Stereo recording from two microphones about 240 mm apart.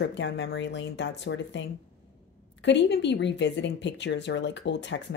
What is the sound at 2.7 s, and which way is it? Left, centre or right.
A woman's voice, left.